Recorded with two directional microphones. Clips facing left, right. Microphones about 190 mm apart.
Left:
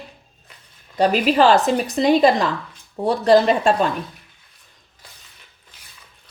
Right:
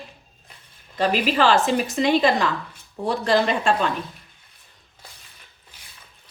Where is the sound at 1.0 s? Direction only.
40° left (ahead or behind).